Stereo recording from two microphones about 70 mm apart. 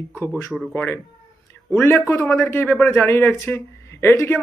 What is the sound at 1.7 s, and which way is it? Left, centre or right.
A man's voice, left.